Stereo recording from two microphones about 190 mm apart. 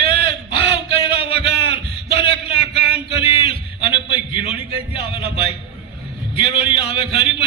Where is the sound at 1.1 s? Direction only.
30° left (ahead or behind).